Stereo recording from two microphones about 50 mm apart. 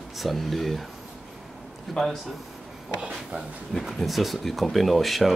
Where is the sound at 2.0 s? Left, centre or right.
Centre.